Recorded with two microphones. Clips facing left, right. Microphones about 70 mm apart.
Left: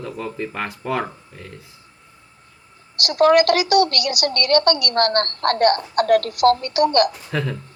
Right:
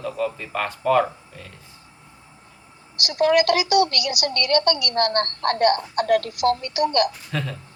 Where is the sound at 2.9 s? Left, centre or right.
Left.